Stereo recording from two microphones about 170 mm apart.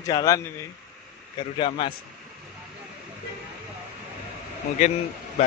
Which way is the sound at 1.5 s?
30° left (ahead or behind).